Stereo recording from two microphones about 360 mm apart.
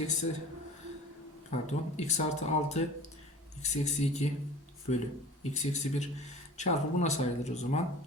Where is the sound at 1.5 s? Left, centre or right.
Centre.